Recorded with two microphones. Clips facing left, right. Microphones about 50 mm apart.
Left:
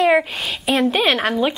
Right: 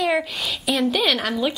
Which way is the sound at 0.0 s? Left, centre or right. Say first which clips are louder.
Left 6 dB; left.